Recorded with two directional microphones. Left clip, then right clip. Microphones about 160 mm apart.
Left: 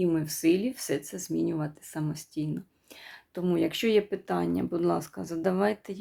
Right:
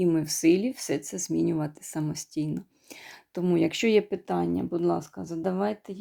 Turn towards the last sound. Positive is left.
turn(degrees=-15)  # may be behind; listen again after turning